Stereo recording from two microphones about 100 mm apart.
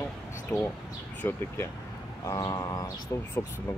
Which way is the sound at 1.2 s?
30° left (ahead or behind).